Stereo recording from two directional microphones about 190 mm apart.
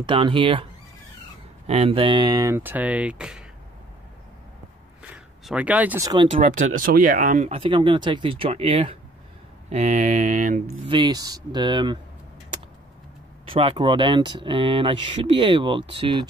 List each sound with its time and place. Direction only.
0.0 s speech: 25° right (ahead or behind)
1.7 s speech: 30° right (ahead or behind); by 3.4 s 5° right (ahead or behind)
5.1 s speech: 5° right (ahead or behind)
6.4 s speech: 50° right (ahead or behind)
10.9 s speech: 25° right (ahead or behind)
13.5 s speech: 30° right (ahead or behind)